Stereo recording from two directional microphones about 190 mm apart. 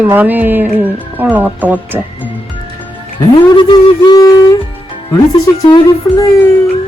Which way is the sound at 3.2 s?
25° left (ahead or behind).